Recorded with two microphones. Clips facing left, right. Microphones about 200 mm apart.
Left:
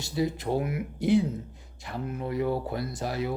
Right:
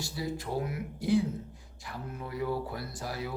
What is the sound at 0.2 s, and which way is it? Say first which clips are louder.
Speech: left 8 dB; 20° left (ahead or behind).